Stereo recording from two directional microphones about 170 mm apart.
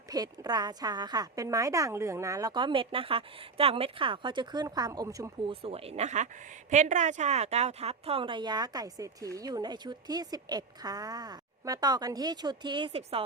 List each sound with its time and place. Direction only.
0.1 s speech: 20° right (ahead or behind)
5.5 s speech: 35° right (ahead or behind)